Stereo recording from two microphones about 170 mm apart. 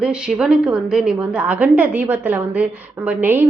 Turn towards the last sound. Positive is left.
turn(degrees=-10)  # may be behind; listen again after turning